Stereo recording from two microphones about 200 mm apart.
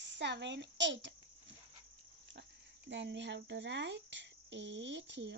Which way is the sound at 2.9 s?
60° right (ahead or behind).